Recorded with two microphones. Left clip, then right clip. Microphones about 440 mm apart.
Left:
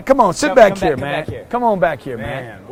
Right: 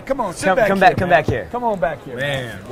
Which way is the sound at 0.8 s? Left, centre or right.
Right.